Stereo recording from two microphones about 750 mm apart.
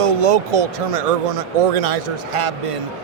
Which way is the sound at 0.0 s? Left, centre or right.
Right.